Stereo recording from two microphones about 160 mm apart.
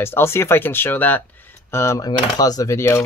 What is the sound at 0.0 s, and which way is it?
Speech, 15° left (ahead or behind).